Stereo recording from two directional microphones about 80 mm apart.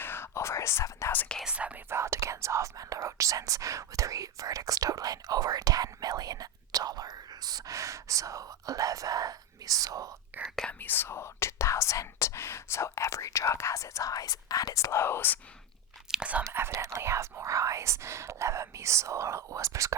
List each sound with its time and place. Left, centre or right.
0.0 s whispering: left
1.5 s whispering: centre
1.9 s whispering: right
10.4 s whispering: centre
10.7 s speech: left
16.1 s speech: centre
16.5 s speech: right